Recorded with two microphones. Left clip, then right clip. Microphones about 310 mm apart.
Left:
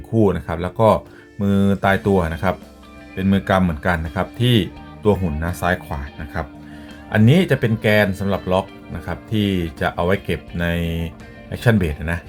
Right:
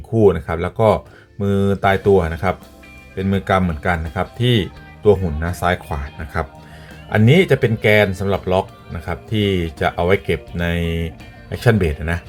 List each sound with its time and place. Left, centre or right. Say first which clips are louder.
0.1 s speech: right 4 dB; centre